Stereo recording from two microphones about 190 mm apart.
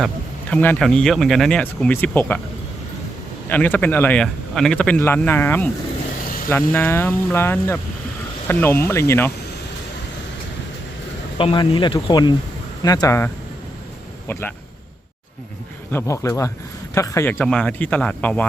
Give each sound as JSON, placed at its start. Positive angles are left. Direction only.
{"t": 0.5, "sound": "speech", "side_deg": 10}
{"t": 3.5, "sound": "speech", "side_deg": 10}
{"t": 6.7, "sound": "speech", "side_deg": 10}
{"t": 11.3, "sound": "speech", "side_deg": 25}
{"t": 15.9, "sound": "speech", "side_deg": 15}
{"t": 17.3, "sound": "speech", "side_deg": 5}